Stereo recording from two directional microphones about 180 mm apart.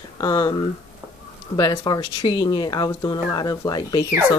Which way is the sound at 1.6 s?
20° left (ahead or behind).